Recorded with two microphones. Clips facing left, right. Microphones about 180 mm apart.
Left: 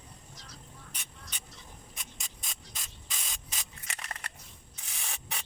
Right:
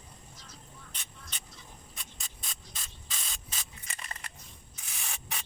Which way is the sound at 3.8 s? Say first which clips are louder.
Left 3 dB; 80° left.